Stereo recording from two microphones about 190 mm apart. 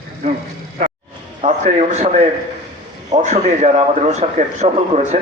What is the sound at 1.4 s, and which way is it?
A man's voice, 35° right (ahead or behind).